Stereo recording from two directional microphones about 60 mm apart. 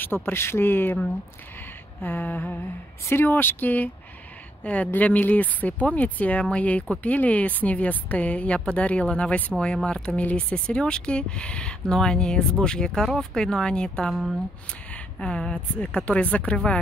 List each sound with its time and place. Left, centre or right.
0.0 s speech: left
2.0 s speech: left; by 14.1 s centre
15.1 s speech: centre